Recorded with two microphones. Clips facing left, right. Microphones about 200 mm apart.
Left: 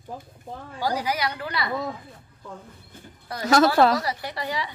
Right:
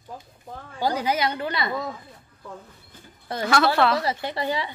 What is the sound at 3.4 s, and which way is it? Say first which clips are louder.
Speech: left 3 dB; 40° left (ahead or behind).